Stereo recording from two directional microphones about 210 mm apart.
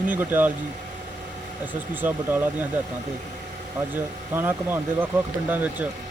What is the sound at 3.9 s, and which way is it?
Speech, 10° right (ahead or behind).